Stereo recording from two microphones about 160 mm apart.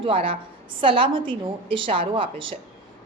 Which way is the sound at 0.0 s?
35° right (ahead or behind).